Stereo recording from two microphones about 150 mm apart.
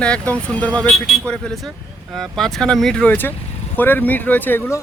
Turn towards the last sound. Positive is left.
turn(degrees=15)  # may be behind; listen again after turning